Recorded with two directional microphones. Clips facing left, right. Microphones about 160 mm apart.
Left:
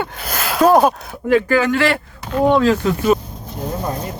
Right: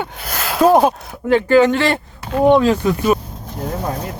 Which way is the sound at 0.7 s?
25° right (ahead or behind).